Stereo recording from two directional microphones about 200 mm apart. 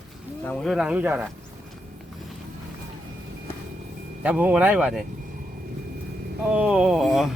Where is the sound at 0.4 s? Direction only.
5° left (ahead or behind).